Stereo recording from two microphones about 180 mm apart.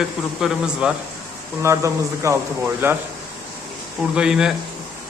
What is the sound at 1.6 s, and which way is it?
Speech, 15° right (ahead or behind).